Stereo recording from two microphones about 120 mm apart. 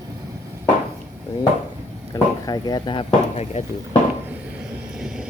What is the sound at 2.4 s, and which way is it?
Speech, 35° left (ahead or behind).